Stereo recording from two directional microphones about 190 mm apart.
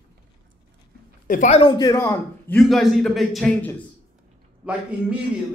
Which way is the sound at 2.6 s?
Centre (ahead or behind).